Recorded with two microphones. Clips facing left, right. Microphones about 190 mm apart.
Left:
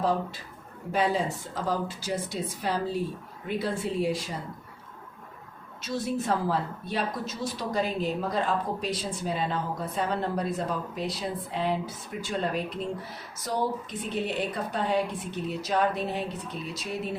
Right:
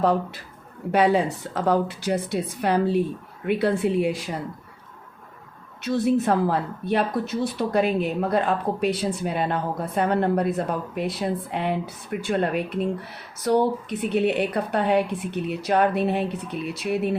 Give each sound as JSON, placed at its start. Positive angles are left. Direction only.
{"t": 0.0, "sound": "a woman's voice", "side_deg": -60}
{"t": 5.8, "sound": "a woman's voice", "side_deg": -60}